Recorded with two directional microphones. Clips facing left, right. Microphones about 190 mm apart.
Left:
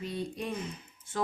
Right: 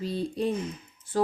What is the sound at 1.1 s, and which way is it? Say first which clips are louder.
Music: right 8 dB; 35° right (ahead or behind).